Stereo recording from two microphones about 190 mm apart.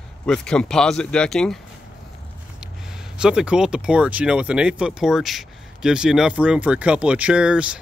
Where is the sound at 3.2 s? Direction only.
5° right (ahead or behind).